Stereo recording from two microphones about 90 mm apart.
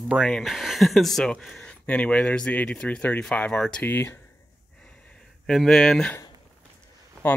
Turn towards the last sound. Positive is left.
turn(degrees=20)  # may be behind; listen again after turning